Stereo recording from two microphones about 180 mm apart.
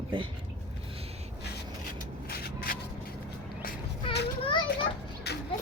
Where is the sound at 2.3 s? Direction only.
60° left (ahead or behind).